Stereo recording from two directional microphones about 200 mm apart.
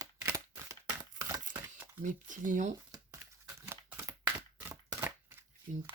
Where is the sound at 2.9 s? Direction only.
15° right (ahead or behind).